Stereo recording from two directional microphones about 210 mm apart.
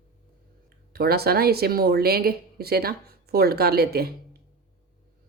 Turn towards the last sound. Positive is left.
turn(degrees=-50)  # may be behind; listen again after turning